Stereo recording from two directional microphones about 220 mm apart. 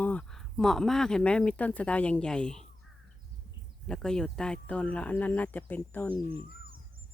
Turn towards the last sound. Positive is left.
turn(degrees=-25)  # may be behind; listen again after turning